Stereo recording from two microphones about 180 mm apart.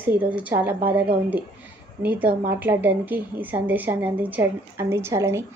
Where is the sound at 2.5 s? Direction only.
10° right (ahead or behind).